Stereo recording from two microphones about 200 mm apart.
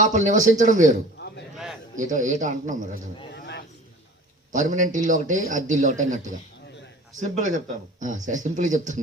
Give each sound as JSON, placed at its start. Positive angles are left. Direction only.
{"t": 0.0, "sound": "speech", "side_deg": -40}
{"t": 1.2, "sound": "chop", "side_deg": 60}
{"t": 2.0, "sound": "speech", "side_deg": -40}
{"t": 3.3, "sound": "a sound", "side_deg": 60}
{"t": 4.5, "sound": "speech", "side_deg": -40}